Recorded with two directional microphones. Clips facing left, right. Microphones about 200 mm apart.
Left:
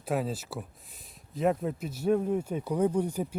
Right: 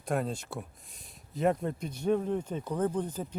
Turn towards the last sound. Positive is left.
turn(degrees=10)  # may be behind; listen again after turning